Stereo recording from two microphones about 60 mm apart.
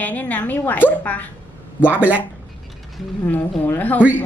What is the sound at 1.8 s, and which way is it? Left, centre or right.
Speech, right.